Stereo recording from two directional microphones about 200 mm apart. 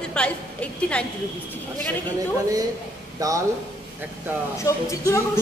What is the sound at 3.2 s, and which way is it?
Speech, 15° right (ahead or behind).